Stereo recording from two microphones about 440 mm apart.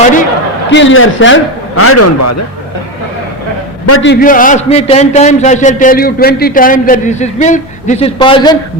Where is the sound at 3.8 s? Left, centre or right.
Left.